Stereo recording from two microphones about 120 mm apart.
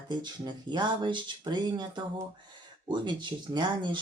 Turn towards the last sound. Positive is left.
turn(degrees=-40)  # may be behind; listen again after turning